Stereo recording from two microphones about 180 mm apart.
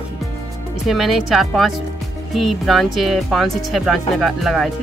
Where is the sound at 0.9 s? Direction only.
Centre (ahead or behind).